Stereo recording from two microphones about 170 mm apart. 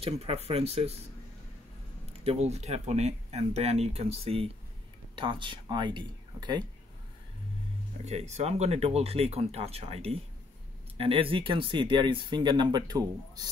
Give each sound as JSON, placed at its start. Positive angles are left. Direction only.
{"t": 0.0, "sound": "speech", "side_deg": -35}
{"t": 2.2, "sound": "speech", "side_deg": -40}
{"t": 8.0, "sound": "speech", "side_deg": -40}